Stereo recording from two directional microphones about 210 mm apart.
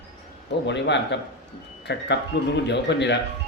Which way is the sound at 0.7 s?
55° left (ahead or behind).